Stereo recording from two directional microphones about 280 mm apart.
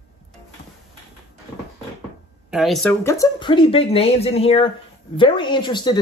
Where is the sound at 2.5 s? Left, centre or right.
Centre.